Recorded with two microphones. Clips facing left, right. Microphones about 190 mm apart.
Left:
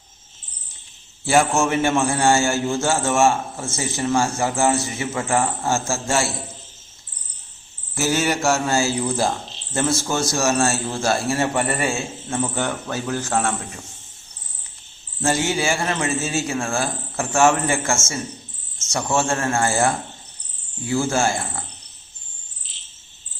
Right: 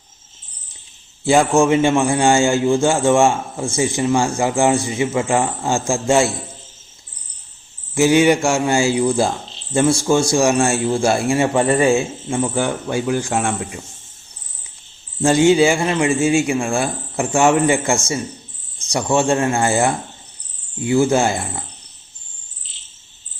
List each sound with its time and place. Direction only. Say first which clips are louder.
1.2 s a man's voice: right 4 dB; 15° right (ahead or behind)
7.9 s a man's voice: right 8 dB; 15° right (ahead or behind)
15.2 s a man's voice: right 9 dB; 15° right (ahead or behind)